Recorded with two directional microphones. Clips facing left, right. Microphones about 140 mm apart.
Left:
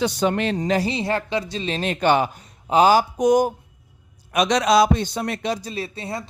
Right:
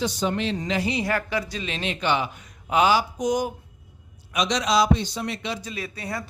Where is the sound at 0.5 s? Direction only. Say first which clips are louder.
Left 4 dB; 35° left (ahead or behind).